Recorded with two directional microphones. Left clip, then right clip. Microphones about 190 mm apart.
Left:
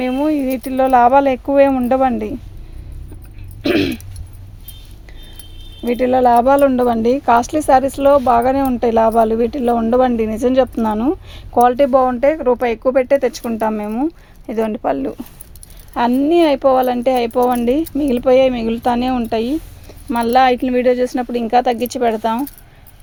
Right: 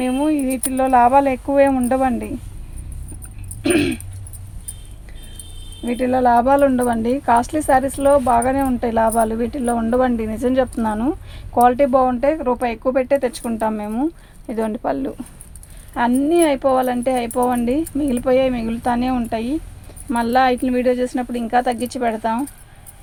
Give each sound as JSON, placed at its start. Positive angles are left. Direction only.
{"t": 0.0, "sound": "speech", "side_deg": 45}
{"t": 3.6, "sound": "speech", "side_deg": 50}
{"t": 5.8, "sound": "speech", "side_deg": 45}